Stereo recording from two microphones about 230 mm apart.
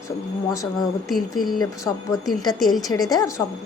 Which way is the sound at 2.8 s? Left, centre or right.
Centre.